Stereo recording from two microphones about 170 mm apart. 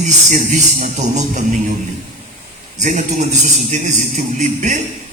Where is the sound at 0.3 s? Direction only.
45° right (ahead or behind).